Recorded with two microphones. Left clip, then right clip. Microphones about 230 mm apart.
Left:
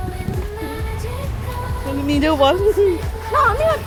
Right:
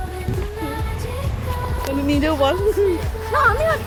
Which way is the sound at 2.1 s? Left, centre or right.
Centre.